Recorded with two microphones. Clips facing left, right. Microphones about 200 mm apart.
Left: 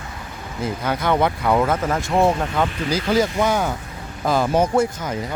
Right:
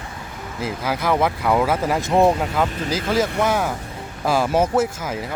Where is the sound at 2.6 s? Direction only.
Centre (ahead or behind).